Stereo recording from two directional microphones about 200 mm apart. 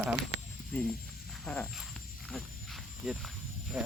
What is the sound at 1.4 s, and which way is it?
Frog, 10° left (ahead or behind).